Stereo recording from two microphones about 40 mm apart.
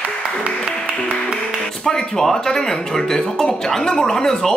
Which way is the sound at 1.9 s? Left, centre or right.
Centre.